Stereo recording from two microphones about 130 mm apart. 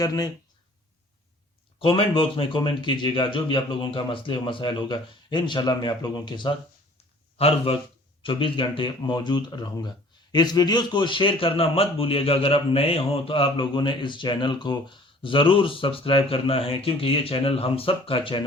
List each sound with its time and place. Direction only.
0.0 s speech: 30° left (ahead or behind)
1.8 s speech: 40° left (ahead or behind)
7.3 s a man's voice: 50° left (ahead or behind)